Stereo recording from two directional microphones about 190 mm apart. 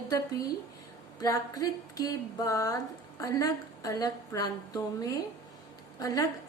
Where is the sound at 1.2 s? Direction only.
20° left (ahead or behind).